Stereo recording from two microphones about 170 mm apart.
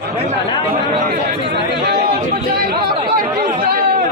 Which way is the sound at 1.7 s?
75° right (ahead or behind).